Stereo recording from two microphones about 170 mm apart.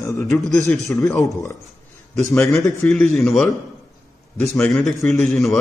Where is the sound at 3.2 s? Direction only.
Centre (ahead or behind).